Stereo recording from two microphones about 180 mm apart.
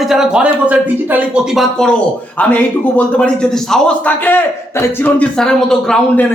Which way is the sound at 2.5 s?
5° left (ahead or behind).